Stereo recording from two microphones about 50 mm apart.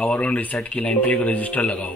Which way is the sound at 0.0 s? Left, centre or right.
Left.